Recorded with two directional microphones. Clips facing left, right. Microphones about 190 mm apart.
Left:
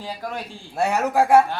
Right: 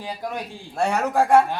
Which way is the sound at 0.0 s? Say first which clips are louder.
Right 1 dB; 15° right (ahead or behind).